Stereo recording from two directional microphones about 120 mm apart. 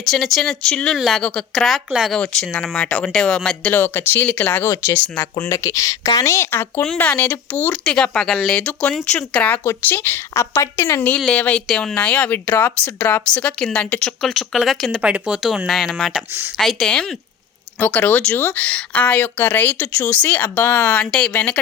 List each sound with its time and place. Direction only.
0.0 s speech: centre (ahead or behind)
5.4 s a woman's voice: 25° left (ahead or behind)
6.8 s a woman's voice: 10° left (ahead or behind)
12.5 s speech: 20° left (ahead or behind)